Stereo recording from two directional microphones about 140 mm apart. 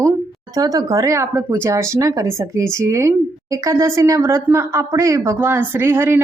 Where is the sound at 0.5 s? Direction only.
25° right (ahead or behind).